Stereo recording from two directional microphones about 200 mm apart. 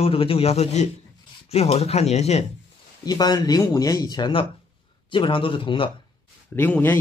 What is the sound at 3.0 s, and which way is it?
Speech, 20° left (ahead or behind).